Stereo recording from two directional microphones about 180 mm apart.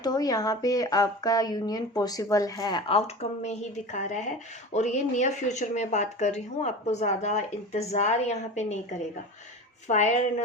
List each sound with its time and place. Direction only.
0.0 s speech: 20° left (ahead or behind)
3.2 s speech: 40° left (ahead or behind)
9.9 s speech: 40° left (ahead or behind)